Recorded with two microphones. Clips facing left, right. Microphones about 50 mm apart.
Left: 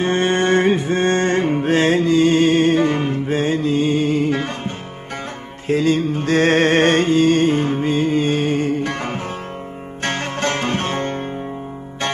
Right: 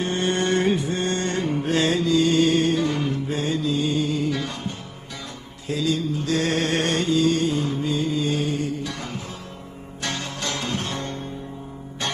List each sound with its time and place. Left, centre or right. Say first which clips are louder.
0.0 s music: left 6 dB; left